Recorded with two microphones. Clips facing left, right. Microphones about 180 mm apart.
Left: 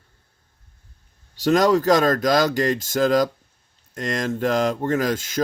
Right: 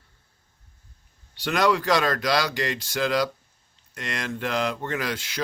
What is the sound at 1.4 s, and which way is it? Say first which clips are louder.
Speech: left 6 dB; 40° left (ahead or behind).